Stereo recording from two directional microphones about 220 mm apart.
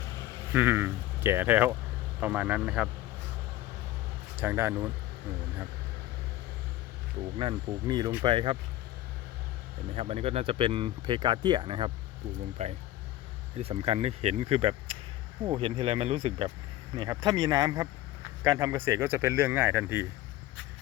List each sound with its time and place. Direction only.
0.5 s speech: 10° right (ahead or behind)
4.4 s speech: 10° right (ahead or behind)
7.3 s speech: 20° right (ahead or behind)
9.9 s speech: 30° right (ahead or behind); by 20.1 s 10° right (ahead or behind)